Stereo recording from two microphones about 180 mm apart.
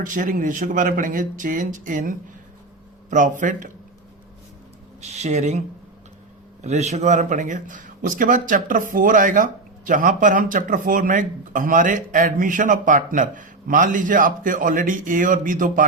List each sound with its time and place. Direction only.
0.0 s speech: 45° right (ahead or behind)
4.9 s speech: 40° right (ahead or behind)